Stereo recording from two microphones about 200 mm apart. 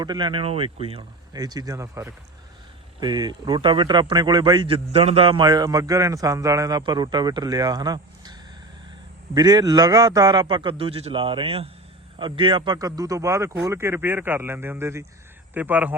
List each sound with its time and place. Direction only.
0.0 s a man's voice: 20° right (ahead or behind)